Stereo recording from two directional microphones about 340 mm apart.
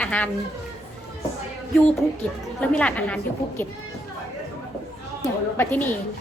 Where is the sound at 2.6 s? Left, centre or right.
Centre.